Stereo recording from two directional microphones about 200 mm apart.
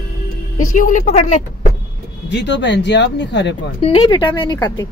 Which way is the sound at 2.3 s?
60° left (ahead or behind).